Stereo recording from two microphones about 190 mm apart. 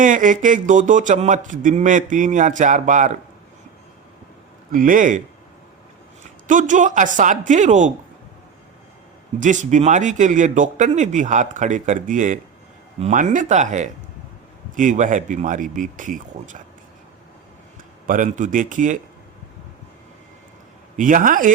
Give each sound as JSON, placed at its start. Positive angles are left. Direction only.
{"t": 0.0, "sound": "speech", "side_deg": -45}
{"t": 4.7, "sound": "speech", "side_deg": -45}
{"t": 6.5, "sound": "speech", "side_deg": -40}
{"t": 9.4, "sound": "speech", "side_deg": -40}
{"t": 18.0, "sound": "speech", "side_deg": -45}
{"t": 20.9, "sound": "speech", "side_deg": -45}